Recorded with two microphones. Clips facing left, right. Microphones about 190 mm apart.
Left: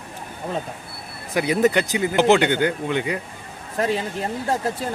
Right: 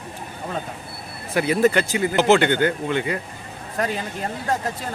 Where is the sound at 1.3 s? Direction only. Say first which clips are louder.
Even; 15° left (ahead or behind).